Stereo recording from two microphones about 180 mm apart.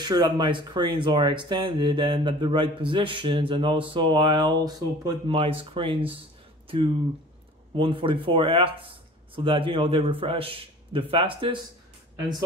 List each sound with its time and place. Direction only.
0.0 s speech: 25° right (ahead or behind)
7.7 s speech: 30° right (ahead or behind)